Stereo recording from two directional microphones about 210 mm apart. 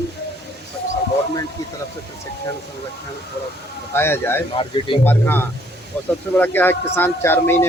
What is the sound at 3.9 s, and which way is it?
Speech, 10° left (ahead or behind).